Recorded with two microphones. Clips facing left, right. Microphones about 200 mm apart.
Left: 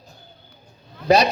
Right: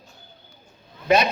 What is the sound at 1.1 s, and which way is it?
Speech, 35° left (ahead or behind).